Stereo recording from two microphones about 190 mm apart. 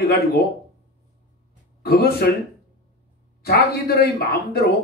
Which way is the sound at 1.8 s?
55° left (ahead or behind).